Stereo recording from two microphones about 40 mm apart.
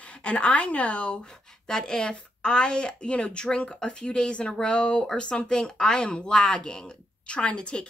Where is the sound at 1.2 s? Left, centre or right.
Centre.